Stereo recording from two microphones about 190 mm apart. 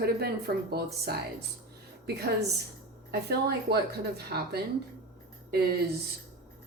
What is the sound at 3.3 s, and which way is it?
A woman's voice, 55° right (ahead or behind).